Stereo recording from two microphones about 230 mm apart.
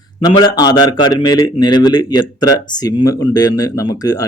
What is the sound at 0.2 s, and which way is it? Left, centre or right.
Speech, centre.